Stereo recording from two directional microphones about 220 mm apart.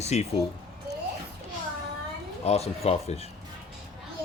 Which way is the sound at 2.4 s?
30° left (ahead or behind).